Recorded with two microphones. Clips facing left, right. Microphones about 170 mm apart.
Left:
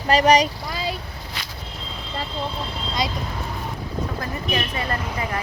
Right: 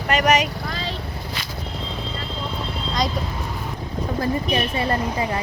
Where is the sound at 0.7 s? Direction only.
10° left (ahead or behind).